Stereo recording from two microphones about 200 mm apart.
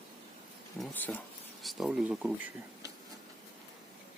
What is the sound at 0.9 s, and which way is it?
Speech, 10° left (ahead or behind).